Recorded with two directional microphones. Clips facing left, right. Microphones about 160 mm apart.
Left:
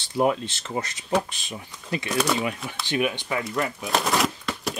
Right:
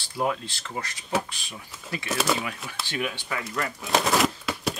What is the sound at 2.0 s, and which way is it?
Speech, 5° right (ahead or behind).